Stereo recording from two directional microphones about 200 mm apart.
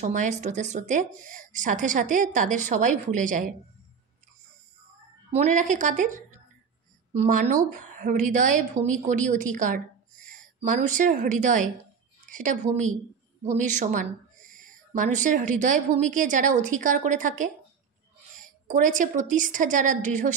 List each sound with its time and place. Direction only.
0.0 s speech: 40° right (ahead or behind)
5.3 s a woman's voice: 35° right (ahead or behind)